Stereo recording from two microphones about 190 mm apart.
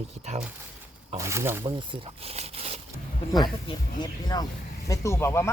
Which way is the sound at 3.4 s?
20° left (ahead or behind).